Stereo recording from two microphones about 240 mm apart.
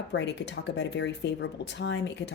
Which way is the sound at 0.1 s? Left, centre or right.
Left.